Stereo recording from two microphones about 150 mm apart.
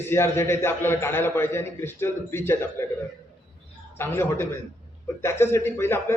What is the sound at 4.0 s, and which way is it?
A man's voice, 15° left (ahead or behind).